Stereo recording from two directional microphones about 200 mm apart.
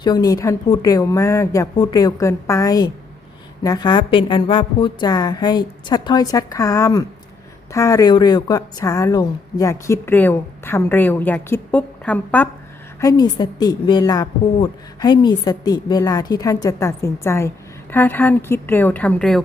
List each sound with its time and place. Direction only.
0.0 s a woman's voice: 20° left (ahead or behind)
13.0 s a woman's voice: 20° left (ahead or behind)